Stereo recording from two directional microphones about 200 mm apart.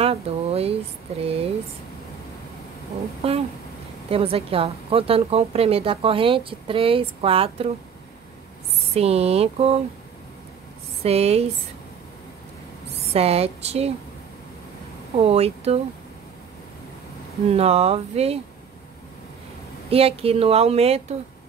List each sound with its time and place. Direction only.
0.0 s a sound: 30° right (ahead or behind)
1.2 s a woman's voice: 30° right (ahead or behind)
3.2 s a woman's voice: 30° right (ahead or behind)
8.9 s speech: 30° right (ahead or behind)
11.1 s speech: 30° right (ahead or behind)
13.1 s speech: 30° right (ahead or behind)
15.2 s speech: 30° right (ahead or behind)
17.5 s speech: 30° right (ahead or behind)
19.9 s a woman's voice: 30° right (ahead or behind)